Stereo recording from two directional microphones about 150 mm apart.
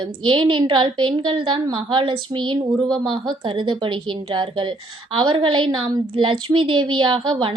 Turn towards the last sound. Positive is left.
turn(degrees=-30)  # may be behind; listen again after turning